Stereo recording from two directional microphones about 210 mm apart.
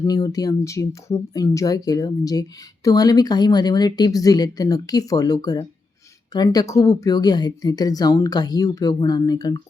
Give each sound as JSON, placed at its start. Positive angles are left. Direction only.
{"t": 0.0, "sound": "speech", "side_deg": 15}